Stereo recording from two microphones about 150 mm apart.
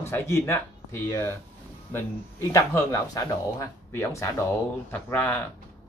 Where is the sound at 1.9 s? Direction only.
15° left (ahead or behind).